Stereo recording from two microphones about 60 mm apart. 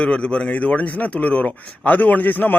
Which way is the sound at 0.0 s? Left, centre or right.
Centre.